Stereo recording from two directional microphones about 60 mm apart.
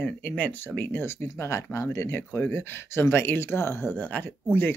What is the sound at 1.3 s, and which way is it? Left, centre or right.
Speech, left.